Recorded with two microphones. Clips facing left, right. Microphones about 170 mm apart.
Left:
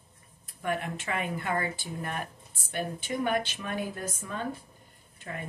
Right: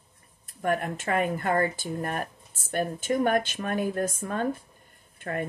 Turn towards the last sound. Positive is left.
turn(degrees=-55)  # may be behind; listen again after turning